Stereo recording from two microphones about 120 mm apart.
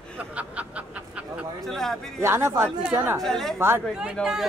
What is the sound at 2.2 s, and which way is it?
Speech, 20° right (ahead or behind).